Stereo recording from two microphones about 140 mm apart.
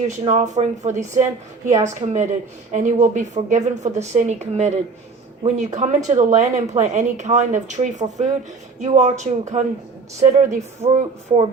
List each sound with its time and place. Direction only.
0.3 s speech: 60° right (ahead or behind)